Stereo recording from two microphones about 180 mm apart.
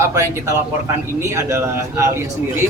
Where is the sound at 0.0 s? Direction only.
15° right (ahead or behind).